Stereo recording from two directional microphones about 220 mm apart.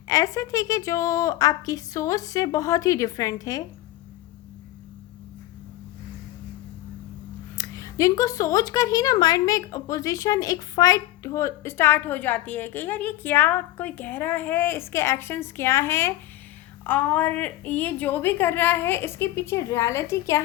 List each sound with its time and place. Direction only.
0.1 s speech: 15° left (ahead or behind)
7.5 s speech: 15° left (ahead or behind)